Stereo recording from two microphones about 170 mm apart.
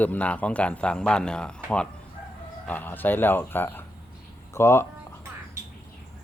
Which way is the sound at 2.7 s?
10° left (ahead or behind).